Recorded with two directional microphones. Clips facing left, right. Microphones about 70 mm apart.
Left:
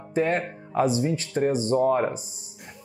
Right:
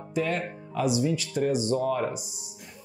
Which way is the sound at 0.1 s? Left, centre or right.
Left.